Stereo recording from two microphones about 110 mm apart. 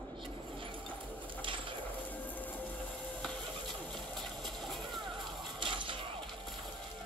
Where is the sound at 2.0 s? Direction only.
15° left (ahead or behind).